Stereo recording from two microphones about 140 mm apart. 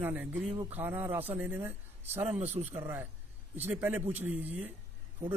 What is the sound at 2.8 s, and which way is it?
Speech, 15° right (ahead or behind).